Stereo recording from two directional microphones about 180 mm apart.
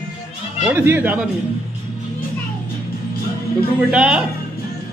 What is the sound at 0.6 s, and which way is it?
Speech, 10° right (ahead or behind).